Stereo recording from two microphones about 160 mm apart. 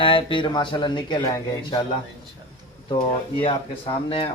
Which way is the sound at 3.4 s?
35° left (ahead or behind).